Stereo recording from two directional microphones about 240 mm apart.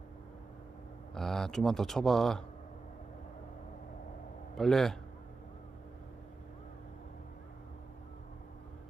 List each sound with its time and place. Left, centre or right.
1.1 s speech: centre
4.5 s speech: centre